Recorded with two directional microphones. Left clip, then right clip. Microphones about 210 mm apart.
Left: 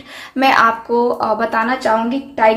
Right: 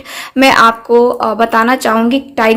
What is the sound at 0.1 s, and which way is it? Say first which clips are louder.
Speech: right 4 dB; 35° right (ahead or behind).